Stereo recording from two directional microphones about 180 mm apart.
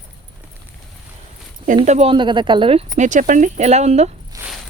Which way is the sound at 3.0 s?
45° right (ahead or behind).